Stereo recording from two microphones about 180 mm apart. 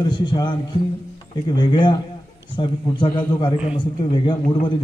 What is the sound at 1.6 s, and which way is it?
A man's voice, 25° left (ahead or behind).